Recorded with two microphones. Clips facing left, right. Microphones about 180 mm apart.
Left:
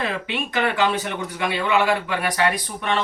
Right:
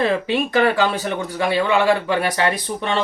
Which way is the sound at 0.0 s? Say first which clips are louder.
Right 7 dB; 35° right (ahead or behind).